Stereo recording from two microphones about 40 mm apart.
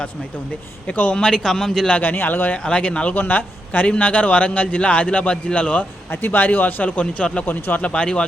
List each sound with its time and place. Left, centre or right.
0.9 s a man's voice: left
1.2 s speech: centre
2.1 s a man's voice: left
2.6 s a man's voice: left
3.2 s a man's voice: left
6.1 s a man's voice: left